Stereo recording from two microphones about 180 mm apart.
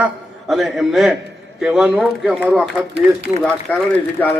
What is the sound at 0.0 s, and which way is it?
A man's voice, centre (ahead or behind).